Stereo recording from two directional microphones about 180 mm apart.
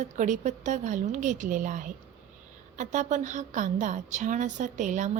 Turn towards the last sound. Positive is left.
turn(degrees=-45)  # may be behind; listen again after turning